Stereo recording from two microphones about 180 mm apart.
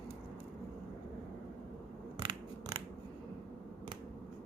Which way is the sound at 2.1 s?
25° right (ahead or behind).